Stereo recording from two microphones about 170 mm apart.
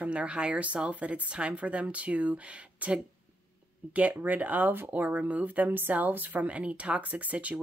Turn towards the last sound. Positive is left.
turn(degrees=-10)  # may be behind; listen again after turning